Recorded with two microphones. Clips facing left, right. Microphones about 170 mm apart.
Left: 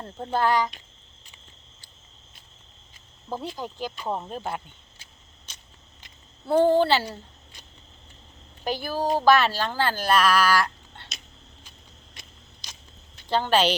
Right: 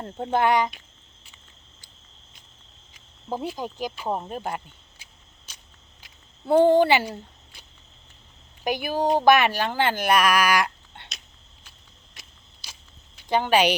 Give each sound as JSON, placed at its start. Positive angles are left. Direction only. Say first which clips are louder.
{"t": 0.0, "sound": "speech", "louder": "right 2 dB", "side_deg": -20}
{"t": 2.9, "sound": "speech", "louder": "right 3 dB", "side_deg": -15}
{"t": 5.5, "sound": "a sound", "louder": "left 1 dB", "side_deg": -10}
{"t": 6.4, "sound": "speech", "louder": "right 2 dB", "side_deg": -15}
{"t": 8.6, "sound": "speech", "louder": "right 3 dB", "side_deg": -15}
{"t": 12.2, "sound": "a sound", "louder": "even", "side_deg": -5}
{"t": 13.1, "sound": "a woman's voice", "louder": "right 2 dB", "side_deg": -15}